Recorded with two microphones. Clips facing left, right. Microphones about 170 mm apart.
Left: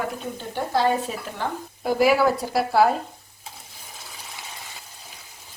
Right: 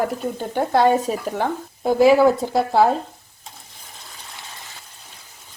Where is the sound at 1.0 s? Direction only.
40° right (ahead or behind).